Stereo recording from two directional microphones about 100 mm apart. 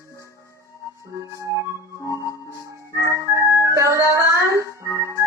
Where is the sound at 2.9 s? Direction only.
30° right (ahead or behind).